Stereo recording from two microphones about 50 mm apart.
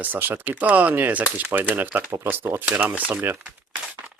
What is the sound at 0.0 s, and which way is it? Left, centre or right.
Speech, right.